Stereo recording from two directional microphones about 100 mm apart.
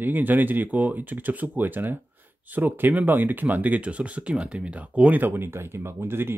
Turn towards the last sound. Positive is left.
turn(degrees=-25)  # may be behind; listen again after turning